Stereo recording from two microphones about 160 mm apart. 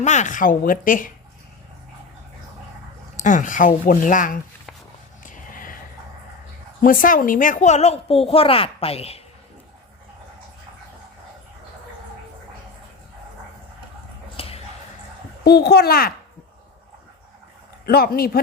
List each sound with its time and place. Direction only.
0.0 s speech: 45° left (ahead or behind)
3.2 s speech: 55° left (ahead or behind)
5.2 s a sound: 55° left (ahead or behind)
6.8 s a woman's voice: 60° left (ahead or behind); by 9.2 s 40° left (ahead or behind)
14.3 s a sound: 35° left (ahead or behind)
15.4 s a child's voice: 90° left; by 16.1 s 70° left (ahead or behind)
17.8 s a man's voice: 70° left (ahead or behind)